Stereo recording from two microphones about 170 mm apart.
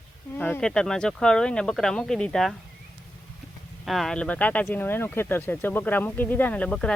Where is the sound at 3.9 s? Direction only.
Centre (ahead or behind).